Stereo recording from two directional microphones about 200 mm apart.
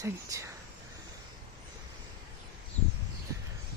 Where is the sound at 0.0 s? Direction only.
15° right (ahead or behind).